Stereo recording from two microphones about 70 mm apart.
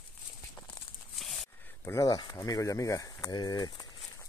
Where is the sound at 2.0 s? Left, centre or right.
Left.